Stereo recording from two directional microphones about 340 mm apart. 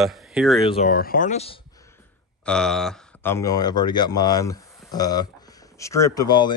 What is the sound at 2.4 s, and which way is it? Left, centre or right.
Speech, centre.